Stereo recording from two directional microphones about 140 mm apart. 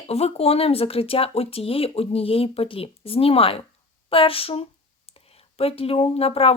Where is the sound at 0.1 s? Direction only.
45° left (ahead or behind).